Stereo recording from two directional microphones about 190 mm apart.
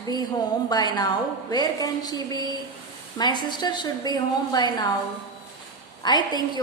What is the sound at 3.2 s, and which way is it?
A woman's voice, 20° left (ahead or behind).